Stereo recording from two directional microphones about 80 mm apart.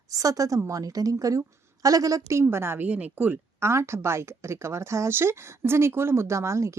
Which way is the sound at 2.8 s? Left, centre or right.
Centre.